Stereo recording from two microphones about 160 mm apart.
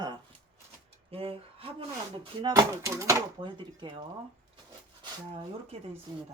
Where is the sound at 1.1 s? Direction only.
35° right (ahead or behind).